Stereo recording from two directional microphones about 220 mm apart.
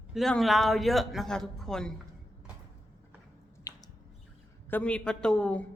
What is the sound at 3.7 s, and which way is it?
Squish, 15° left (ahead or behind).